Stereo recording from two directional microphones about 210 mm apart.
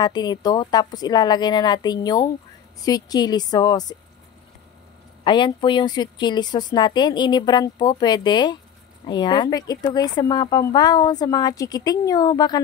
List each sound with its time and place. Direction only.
0.0 s speech: 20° left (ahead or behind)
5.2 s speech: 20° left (ahead or behind)